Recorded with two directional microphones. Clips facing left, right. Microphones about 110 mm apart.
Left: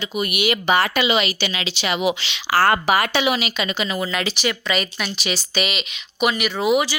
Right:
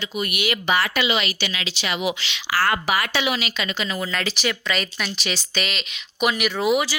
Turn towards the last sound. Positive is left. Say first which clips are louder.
# left 2 dB
turn(degrees=0)  # may be behind; listen again after turning